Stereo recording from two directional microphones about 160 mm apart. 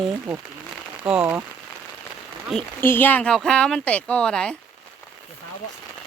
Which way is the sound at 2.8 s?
10° left (ahead or behind).